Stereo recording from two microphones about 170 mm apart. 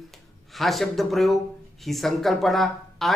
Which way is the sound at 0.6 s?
Centre (ahead or behind).